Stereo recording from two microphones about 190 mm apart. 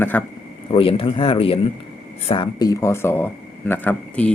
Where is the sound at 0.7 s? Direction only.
30° left (ahead or behind).